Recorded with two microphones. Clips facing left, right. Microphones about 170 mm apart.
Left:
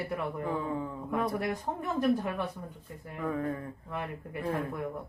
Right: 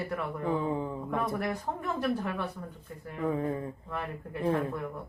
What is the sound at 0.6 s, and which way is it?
Speech, 20° right (ahead or behind).